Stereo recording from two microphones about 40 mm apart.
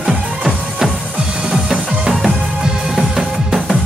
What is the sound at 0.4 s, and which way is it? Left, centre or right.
Music, centre.